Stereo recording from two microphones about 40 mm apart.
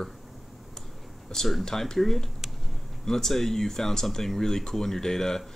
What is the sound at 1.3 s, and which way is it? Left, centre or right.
Speech, centre.